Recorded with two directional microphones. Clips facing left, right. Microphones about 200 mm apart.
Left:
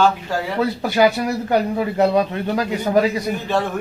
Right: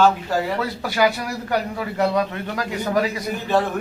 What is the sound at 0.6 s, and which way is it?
A man's voice, 20° left (ahead or behind).